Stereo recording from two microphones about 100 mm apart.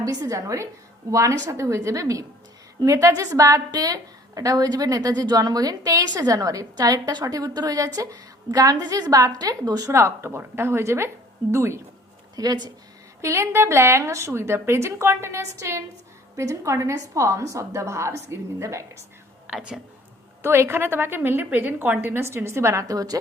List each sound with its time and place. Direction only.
0.0 s a woman's voice: 35° right (ahead or behind)
9.9 s a woman's voice: 25° right (ahead or behind)
12.4 s speech: 45° right (ahead or behind)
13.2 s a woman's voice: 30° right (ahead or behind)
19.5 s speech: 5° right (ahead or behind)
20.4 s a woman's voice: 25° right (ahead or behind)